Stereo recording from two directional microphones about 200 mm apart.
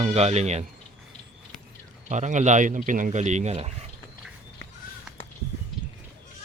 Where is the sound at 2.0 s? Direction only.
35° right (ahead or behind).